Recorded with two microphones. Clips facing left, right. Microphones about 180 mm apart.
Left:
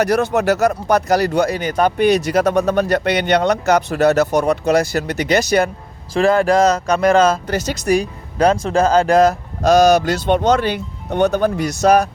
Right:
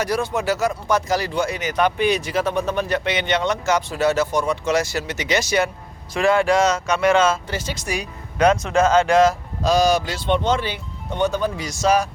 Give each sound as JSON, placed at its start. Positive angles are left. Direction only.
{"t": 0.0, "sound": "speech", "side_deg": 65}
{"t": 1.3, "sound": "speech", "side_deg": 40}
{"t": 3.7, "sound": "speech", "side_deg": 60}
{"t": 6.1, "sound": "speech", "side_deg": 40}
{"t": 10.1, "sound": "speech", "side_deg": 45}
{"t": 11.1, "sound": "speech", "side_deg": 65}